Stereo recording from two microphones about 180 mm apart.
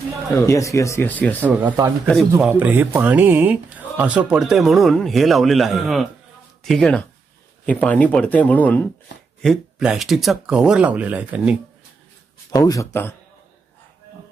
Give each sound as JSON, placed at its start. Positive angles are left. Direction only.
{"t": 0.3, "sound": "speech", "side_deg": 15}
{"t": 1.4, "sound": "speech", "side_deg": -10}
{"t": 12.5, "sound": "speech", "side_deg": 20}